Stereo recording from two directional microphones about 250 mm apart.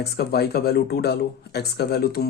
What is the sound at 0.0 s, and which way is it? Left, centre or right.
Speech, left.